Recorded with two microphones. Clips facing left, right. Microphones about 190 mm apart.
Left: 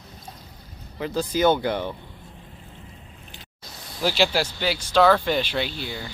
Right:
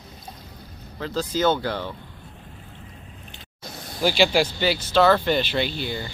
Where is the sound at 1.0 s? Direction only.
15° left (ahead or behind).